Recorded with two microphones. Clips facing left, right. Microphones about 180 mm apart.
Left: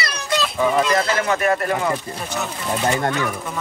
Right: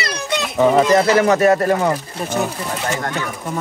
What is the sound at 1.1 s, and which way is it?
Speech, 35° right (ahead or behind).